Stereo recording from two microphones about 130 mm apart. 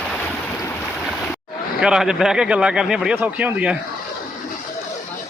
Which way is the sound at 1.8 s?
5° right (ahead or behind).